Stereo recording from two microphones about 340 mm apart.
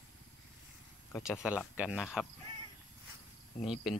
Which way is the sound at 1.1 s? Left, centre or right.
Centre.